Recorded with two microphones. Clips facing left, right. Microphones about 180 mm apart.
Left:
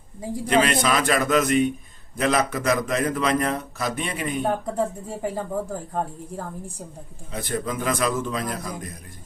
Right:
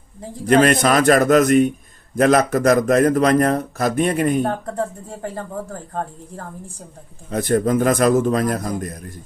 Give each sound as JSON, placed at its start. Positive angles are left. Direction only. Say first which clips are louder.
{"t": 0.4, "sound": "a man's voice", "louder": "right 6 dB", "side_deg": -45}
{"t": 4.4, "sound": "speech", "louder": "right 1 dB", "side_deg": 10}
{"t": 7.3, "sound": "a man's voice", "louder": "right 10 dB", "side_deg": -45}